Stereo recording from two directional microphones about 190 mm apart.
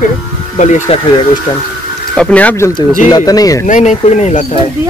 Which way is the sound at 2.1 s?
5° left (ahead or behind).